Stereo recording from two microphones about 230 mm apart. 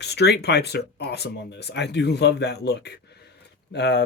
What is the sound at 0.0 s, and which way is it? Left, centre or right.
Speech, left.